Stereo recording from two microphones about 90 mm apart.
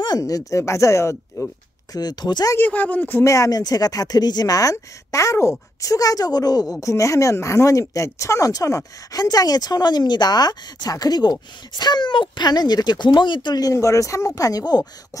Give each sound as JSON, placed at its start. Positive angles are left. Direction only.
{"t": 0.2, "sound": "speech", "side_deg": 35}
{"t": 2.0, "sound": "speech", "side_deg": 50}
{"t": 2.5, "sound": "speech", "side_deg": 20}
{"t": 3.3, "sound": "speech", "side_deg": 40}